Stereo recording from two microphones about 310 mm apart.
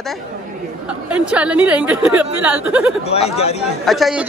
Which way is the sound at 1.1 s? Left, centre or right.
Centre.